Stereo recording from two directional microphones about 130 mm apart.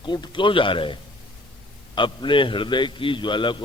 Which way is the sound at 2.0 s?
40° left (ahead or behind).